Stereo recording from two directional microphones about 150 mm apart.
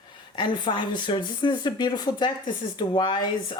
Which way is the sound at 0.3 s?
30° left (ahead or behind).